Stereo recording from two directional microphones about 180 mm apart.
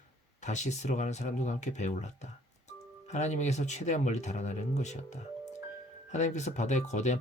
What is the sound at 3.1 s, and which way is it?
Speech, 40° left (ahead or behind).